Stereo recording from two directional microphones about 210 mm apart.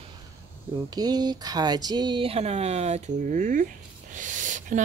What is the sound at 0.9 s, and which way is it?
Speech, 20° right (ahead or behind).